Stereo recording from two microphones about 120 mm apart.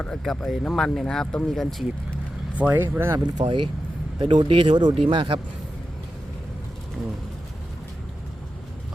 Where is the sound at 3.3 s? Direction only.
45° right (ahead or behind).